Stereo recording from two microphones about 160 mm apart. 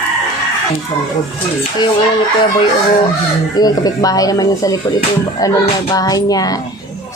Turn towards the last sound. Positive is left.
turn(degrees=25)  # may be behind; listen again after turning